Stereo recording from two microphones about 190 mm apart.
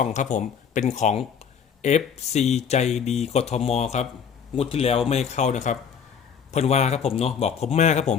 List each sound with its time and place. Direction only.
0.0 s speech: 40° left (ahead or behind)